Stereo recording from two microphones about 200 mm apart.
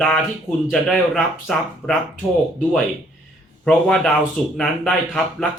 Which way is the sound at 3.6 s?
5° left (ahead or behind).